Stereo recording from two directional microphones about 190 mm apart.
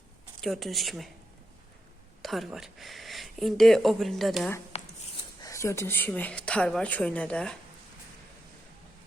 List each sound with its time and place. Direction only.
0.4 s speech: centre (ahead or behind)
2.2 s speech: centre (ahead or behind)
4.7 s a sound: 35° left (ahead or behind)
5.4 s speech: 15° left (ahead or behind)